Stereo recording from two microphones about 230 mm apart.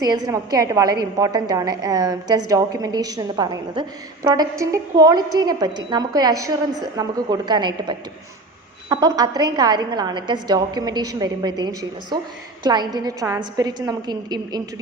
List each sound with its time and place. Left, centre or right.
0.0 s a woman's voice: centre